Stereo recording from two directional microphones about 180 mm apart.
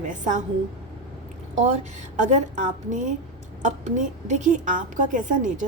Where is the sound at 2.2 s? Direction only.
40° right (ahead or behind).